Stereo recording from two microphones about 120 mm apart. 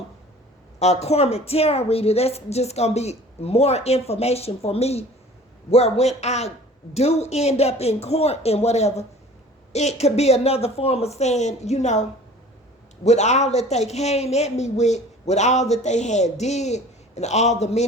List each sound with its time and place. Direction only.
0.8 s a woman's voice: 60° left (ahead or behind)
13.1 s a woman's voice: 70° left (ahead or behind)